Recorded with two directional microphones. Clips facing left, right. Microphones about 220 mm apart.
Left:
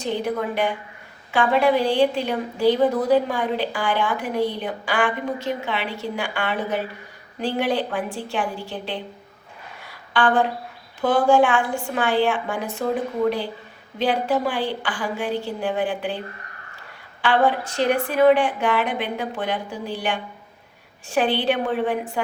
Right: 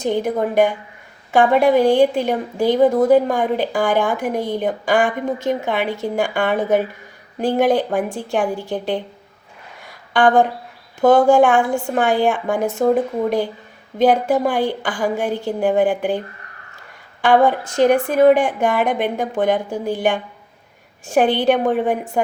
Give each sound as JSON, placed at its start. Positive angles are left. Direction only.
{"t": 0.0, "sound": "a woman's voice", "side_deg": -45}
{"t": 10.1, "sound": "a woman's voice", "side_deg": -45}
{"t": 14.0, "sound": "a woman's voice", "side_deg": -45}
{"t": 17.2, "sound": "a woman's voice", "side_deg": -45}